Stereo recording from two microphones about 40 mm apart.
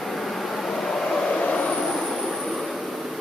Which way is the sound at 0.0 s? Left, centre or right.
Centre.